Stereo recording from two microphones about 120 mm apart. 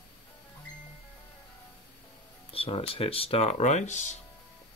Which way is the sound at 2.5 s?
50° left (ahead or behind).